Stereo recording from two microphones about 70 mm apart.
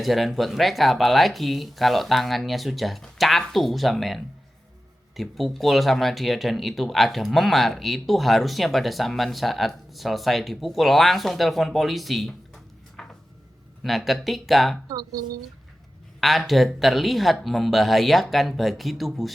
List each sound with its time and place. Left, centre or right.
0.0 s speech: centre
13.0 s a sound: centre
13.8 s speech: centre
14.8 s speech: right
16.2 s speech: centre